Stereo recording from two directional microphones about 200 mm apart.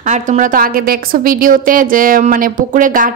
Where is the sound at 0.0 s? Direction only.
40° right (ahead or behind).